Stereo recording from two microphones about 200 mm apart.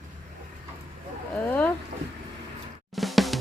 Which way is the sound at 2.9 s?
Centre (ahead or behind).